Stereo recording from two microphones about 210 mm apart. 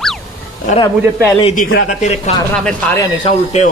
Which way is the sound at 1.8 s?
35° left (ahead or behind).